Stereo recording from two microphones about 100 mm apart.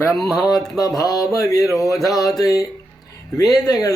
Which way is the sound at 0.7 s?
35° left (ahead or behind).